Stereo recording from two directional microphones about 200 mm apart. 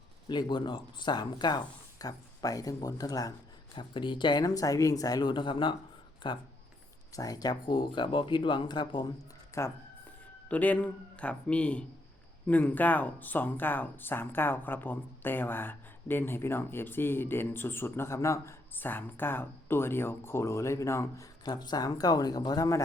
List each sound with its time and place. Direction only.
0.3 s speech: 20° left (ahead or behind)